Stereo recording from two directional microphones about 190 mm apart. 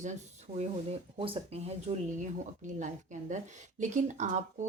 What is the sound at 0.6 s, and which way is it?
Speech, 30° right (ahead or behind).